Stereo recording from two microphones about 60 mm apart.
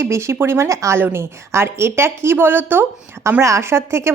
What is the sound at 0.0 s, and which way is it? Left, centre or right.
Speech, right.